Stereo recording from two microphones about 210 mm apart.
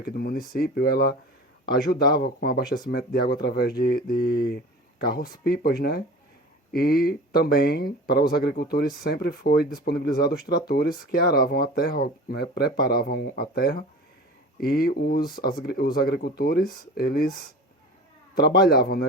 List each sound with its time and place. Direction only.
0.0 s speech: 45° left (ahead or behind)
18.6 s speech: 45° left (ahead or behind)